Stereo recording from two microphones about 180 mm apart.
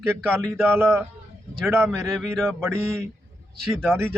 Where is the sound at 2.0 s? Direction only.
Centre (ahead or behind).